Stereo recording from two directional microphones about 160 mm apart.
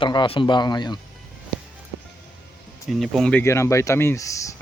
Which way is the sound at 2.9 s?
Centre (ahead or behind).